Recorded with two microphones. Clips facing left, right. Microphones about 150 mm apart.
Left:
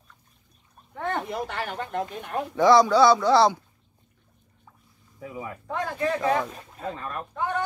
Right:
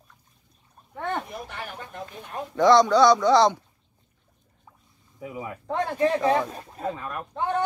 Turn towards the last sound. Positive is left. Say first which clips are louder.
# right 2 dB
turn(degrees=-30)  # may be behind; listen again after turning